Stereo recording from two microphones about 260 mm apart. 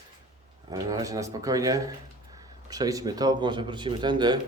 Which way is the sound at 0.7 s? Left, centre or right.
Centre.